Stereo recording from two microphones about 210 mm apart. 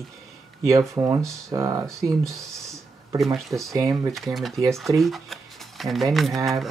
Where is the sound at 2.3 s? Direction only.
Centre (ahead or behind).